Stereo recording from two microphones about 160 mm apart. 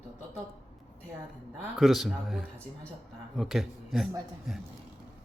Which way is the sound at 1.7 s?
Centre (ahead or behind).